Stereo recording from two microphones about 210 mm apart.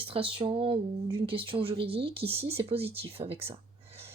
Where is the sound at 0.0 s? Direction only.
25° right (ahead or behind).